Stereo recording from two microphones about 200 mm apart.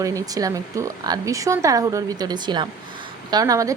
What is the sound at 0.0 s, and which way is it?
Speech, 15° right (ahead or behind).